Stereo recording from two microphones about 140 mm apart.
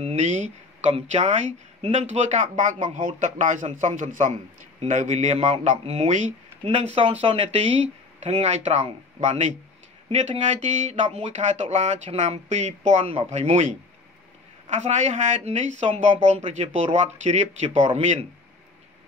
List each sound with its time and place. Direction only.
0.0 s speech: 55° right (ahead or behind)